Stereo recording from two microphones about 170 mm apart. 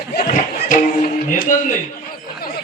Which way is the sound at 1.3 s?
50° left (ahead or behind).